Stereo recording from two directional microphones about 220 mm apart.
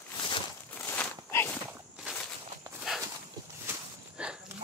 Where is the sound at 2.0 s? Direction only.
Centre (ahead or behind).